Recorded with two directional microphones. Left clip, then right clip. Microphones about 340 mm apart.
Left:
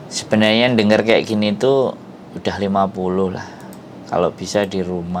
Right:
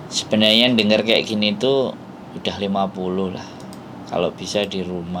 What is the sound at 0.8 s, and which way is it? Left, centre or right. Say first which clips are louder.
Speech: left 3 dB; left.